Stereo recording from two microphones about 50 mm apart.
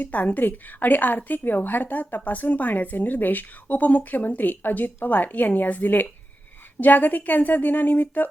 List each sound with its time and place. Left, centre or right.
0.0 s a woman's voice: left